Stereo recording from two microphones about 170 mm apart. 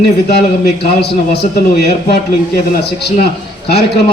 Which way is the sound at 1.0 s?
75° left (ahead or behind).